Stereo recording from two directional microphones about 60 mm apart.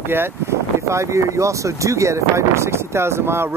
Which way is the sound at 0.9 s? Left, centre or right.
Right.